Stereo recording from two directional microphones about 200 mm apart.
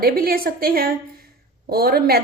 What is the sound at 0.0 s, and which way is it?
A woman's voice, 50° right (ahead or behind).